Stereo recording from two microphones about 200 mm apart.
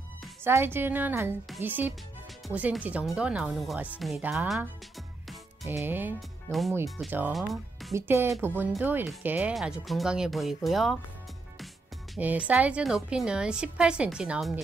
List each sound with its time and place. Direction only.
0.4 s speech: 10° right (ahead or behind)
5.7 s speech: 10° right (ahead or behind)
7.9 s speech: 15° right (ahead or behind)
12.2 s speech: 10° right (ahead or behind)